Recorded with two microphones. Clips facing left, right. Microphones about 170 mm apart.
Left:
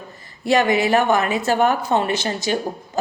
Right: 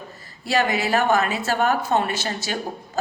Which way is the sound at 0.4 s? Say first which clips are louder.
Left 5 dB; 15° left (ahead or behind).